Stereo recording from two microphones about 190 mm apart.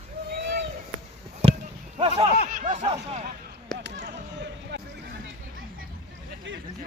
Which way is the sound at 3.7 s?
65° right (ahead or behind).